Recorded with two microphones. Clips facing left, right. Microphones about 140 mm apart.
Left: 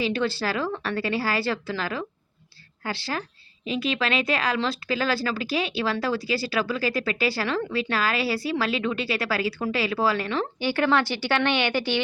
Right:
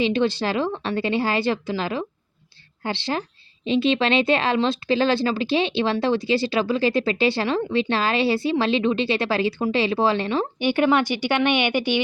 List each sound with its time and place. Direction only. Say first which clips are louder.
0.0 s speech: right 4 dB; 20° right (ahead or behind)